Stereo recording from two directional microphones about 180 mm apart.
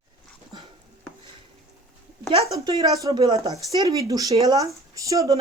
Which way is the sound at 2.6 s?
25° right (ahead or behind).